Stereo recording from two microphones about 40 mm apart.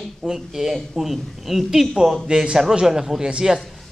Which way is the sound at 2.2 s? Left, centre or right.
Centre.